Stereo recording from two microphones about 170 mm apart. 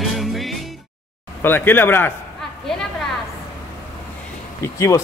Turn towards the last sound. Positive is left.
turn(degrees=15)  # may be behind; listen again after turning